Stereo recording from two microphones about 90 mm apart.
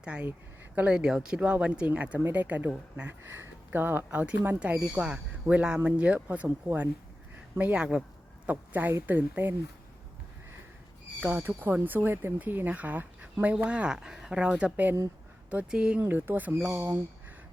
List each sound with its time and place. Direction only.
0.0 s speech: 15° right (ahead or behind)
11.3 s speech: 20° right (ahead or behind)
16.7 s speech: 30° right (ahead or behind)